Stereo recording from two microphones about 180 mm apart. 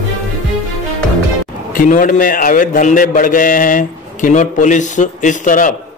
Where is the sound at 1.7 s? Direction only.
50° left (ahead or behind).